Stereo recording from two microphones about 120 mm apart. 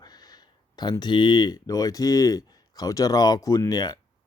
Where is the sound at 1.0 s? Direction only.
40° left (ahead or behind).